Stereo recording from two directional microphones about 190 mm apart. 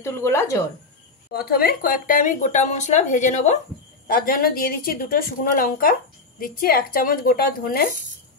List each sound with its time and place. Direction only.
0.0 s speech: 15° left (ahead or behind)
1.3 s speech: 55° left (ahead or behind)
4.1 s speech: 50° left (ahead or behind)